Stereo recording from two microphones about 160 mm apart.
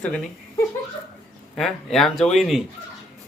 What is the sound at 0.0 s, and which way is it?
Speech, 5° left (ahead or behind).